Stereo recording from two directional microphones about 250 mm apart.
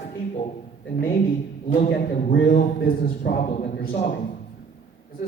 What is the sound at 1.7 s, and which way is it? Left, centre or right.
A man's voice, left.